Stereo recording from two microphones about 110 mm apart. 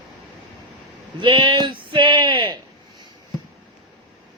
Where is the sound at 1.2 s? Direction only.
45° right (ahead or behind).